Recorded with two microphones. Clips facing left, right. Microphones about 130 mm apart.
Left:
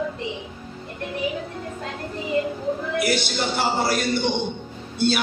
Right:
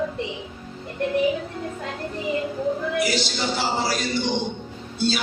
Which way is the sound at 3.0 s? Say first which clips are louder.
Left 1 dB; 55° left (ahead or behind).